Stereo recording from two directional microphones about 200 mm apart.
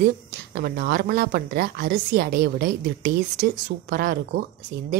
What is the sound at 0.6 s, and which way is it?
A woman's voice, 55° right (ahead or behind).